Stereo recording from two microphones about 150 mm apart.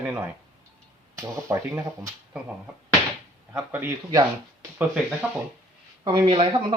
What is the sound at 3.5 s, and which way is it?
Speech, 15° right (ahead or behind).